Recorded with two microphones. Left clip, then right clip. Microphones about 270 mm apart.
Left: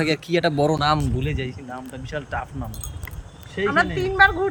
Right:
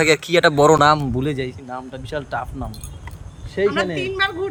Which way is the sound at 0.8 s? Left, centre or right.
Centre.